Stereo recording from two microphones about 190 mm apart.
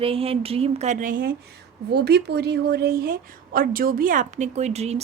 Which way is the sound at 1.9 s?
60° right (ahead or behind).